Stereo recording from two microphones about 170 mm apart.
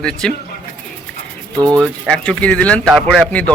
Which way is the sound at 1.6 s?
25° right (ahead or behind).